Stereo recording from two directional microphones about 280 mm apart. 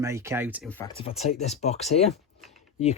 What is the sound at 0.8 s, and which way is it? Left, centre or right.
Speech, centre.